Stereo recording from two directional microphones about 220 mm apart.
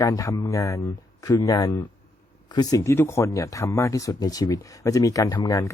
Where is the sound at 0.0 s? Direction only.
15° left (ahead or behind).